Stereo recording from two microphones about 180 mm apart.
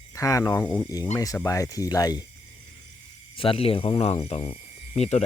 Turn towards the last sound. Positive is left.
turn(degrees=35)  # may be behind; listen again after turning